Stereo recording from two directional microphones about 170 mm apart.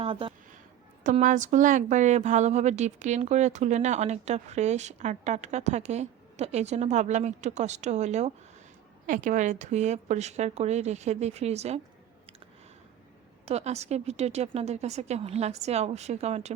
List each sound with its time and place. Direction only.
0.0 s speech: 30° right (ahead or behind)
1.1 s speech: 50° right (ahead or behind)
13.4 s speech: 40° right (ahead or behind)